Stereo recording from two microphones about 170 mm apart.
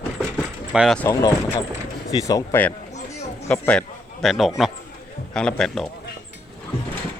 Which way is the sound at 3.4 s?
5° left (ahead or behind).